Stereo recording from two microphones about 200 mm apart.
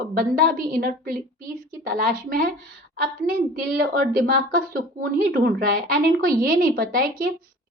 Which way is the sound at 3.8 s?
45° right (ahead or behind).